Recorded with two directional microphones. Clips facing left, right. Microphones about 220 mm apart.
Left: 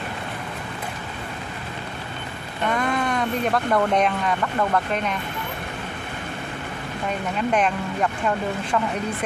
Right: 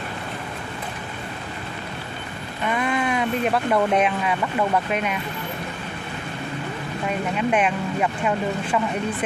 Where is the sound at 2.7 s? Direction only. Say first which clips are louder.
Right 1 dB; 5° right (ahead or behind).